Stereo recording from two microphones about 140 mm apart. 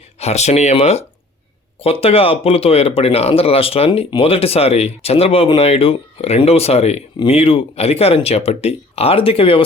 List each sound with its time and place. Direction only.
0.2 s speech: 50° left (ahead or behind)